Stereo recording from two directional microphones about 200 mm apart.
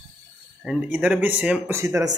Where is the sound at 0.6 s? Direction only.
5° right (ahead or behind).